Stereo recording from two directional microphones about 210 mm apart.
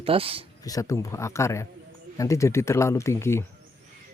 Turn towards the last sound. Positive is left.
turn(degrees=10)  # may be behind; listen again after turning